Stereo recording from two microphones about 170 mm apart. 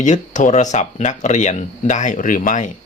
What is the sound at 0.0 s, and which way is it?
Speech, 45° left (ahead or behind).